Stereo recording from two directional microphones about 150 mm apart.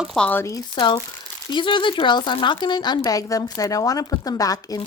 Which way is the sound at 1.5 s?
35° left (ahead or behind).